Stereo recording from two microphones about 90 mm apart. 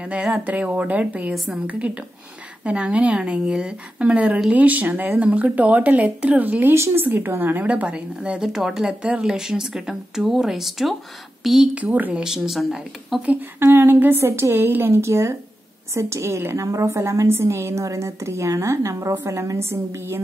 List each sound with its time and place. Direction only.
0.0 s a woman's voice: 10° right (ahead or behind)
7.6 s a woman's voice: 15° right (ahead or behind)
12.2 s speech: 5° right (ahead or behind)
13.2 s a woman's voice: 15° right (ahead or behind)